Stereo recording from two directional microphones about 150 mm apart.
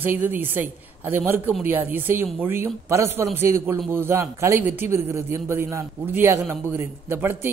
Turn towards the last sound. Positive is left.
turn(degrees=-15)  # may be behind; listen again after turning